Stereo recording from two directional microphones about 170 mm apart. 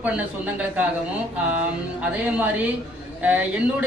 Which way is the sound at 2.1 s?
10° right (ahead or behind).